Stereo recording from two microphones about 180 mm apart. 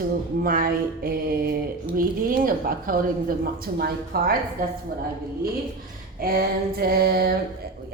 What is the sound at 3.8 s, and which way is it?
Female singing, 55° right (ahead or behind).